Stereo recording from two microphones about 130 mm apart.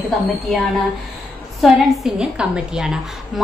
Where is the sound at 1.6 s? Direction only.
Centre (ahead or behind).